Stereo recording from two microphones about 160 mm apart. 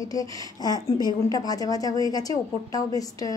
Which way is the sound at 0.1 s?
25° left (ahead or behind).